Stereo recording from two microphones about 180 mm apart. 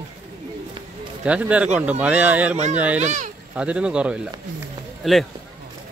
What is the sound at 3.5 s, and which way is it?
Speech, 5° right (ahead or behind).